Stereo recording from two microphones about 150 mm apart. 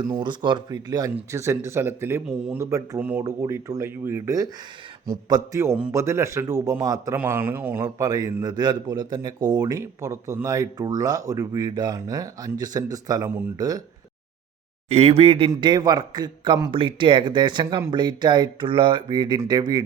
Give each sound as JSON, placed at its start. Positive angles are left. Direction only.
{"t": 0.1, "sound": "a man's voice", "side_deg": -30}
{"t": 14.8, "sound": "speech", "side_deg": -45}
{"t": 15.4, "sound": "a man's voice", "side_deg": -25}